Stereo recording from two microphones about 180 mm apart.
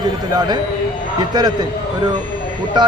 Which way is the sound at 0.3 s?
25° right (ahead or behind).